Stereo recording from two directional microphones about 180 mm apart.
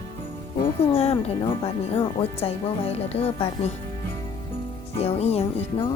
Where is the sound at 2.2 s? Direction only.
35° left (ahead or behind).